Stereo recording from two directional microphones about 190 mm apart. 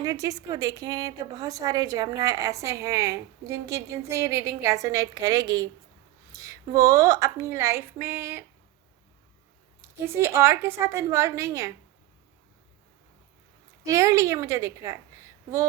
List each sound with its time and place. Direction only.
0.0 s a woman's voice: 20° right (ahead or behind)
10.0 s a woman's voice: 15° right (ahead or behind)
13.8 s a woman's voice: 15° right (ahead or behind)